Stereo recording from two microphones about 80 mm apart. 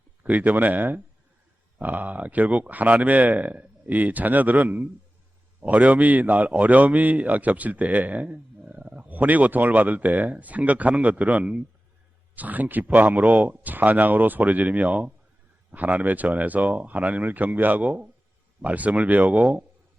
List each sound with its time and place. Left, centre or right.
0.2 s a man's voice: centre